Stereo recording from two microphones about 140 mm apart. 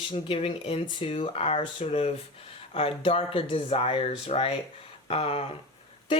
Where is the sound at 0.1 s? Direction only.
40° left (ahead or behind).